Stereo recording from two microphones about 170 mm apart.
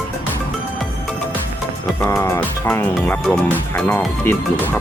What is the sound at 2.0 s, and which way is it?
Speech, 15° left (ahead or behind).